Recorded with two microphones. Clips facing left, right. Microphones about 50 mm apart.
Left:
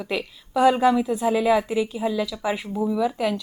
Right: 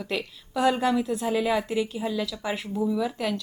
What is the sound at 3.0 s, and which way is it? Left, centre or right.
Speech, centre.